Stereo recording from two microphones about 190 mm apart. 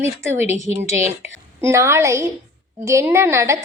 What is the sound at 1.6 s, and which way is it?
A woman's voice, 15° right (ahead or behind).